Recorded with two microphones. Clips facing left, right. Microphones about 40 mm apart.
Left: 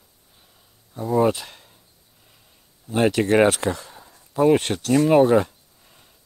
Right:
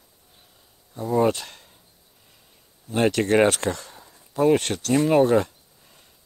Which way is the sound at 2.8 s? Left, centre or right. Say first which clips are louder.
Left 2 dB; centre.